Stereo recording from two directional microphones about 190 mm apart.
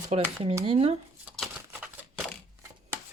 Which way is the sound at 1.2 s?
5° right (ahead or behind).